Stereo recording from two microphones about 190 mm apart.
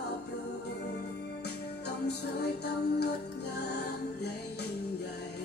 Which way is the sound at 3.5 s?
60° left (ahead or behind).